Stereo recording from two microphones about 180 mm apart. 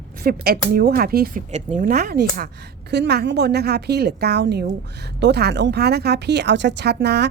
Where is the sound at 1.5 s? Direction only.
40° right (ahead or behind).